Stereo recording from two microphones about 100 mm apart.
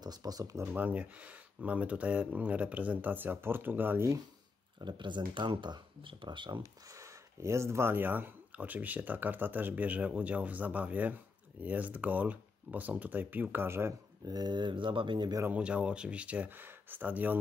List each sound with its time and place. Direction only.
0.0 s speech: 40° right (ahead or behind)
0.7 s speech: 15° right (ahead or behind)
4.7 s speech: 50° right (ahead or behind)
7.0 s speech: 30° right (ahead or behind)
14.2 s speech: 45° right (ahead or behind)
15.4 s speech: 10° right (ahead or behind)